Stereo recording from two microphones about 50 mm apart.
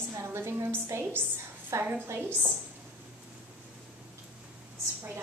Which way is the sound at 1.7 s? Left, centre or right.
Right.